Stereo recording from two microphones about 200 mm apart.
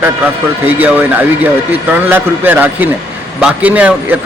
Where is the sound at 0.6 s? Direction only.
10° right (ahead or behind).